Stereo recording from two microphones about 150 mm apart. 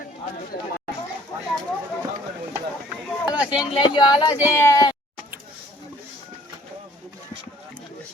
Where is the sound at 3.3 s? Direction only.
5° right (ahead or behind).